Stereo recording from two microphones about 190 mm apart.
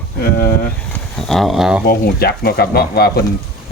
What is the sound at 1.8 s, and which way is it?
Speech, 55° left (ahead or behind).